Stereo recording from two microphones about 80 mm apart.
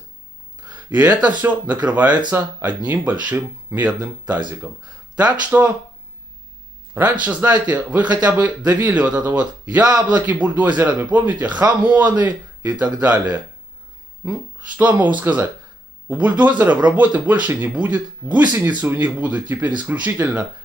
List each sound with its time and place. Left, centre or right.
0.7 s a sound: right
1.2 s speech: centre
6.9 s speech: right
14.8 s speech: centre